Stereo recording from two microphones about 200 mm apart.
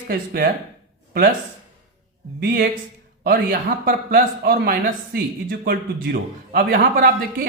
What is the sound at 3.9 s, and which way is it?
Speech, 50° right (ahead or behind).